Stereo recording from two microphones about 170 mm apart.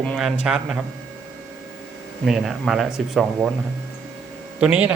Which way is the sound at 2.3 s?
5° right (ahead or behind).